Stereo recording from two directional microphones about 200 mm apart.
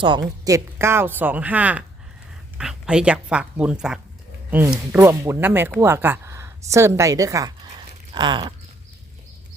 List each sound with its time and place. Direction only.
0.0 s speech: 20° right (ahead or behind)